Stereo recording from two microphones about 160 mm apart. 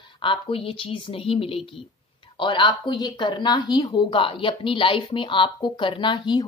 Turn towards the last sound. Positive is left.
turn(degrees=30)  # may be behind; listen again after turning